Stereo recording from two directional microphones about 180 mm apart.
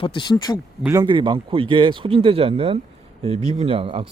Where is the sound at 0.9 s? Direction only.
25° right (ahead or behind).